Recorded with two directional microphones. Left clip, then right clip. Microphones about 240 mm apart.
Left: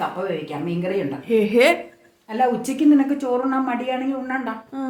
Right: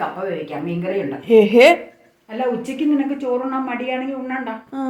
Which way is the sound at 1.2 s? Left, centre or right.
Centre.